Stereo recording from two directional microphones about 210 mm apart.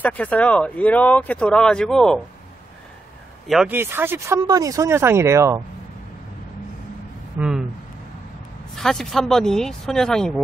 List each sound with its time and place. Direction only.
0.0 s speech: 5° left (ahead or behind)
3.4 s speech: 5° right (ahead or behind)
7.3 s speech: 5° right (ahead or behind)
8.7 s speech: centre (ahead or behind)